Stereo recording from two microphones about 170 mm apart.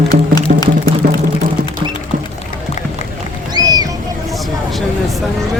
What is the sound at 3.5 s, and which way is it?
Boat, 20° right (ahead or behind).